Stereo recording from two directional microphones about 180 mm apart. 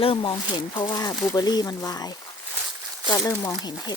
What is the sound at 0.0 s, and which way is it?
Speech, 30° left (ahead or behind).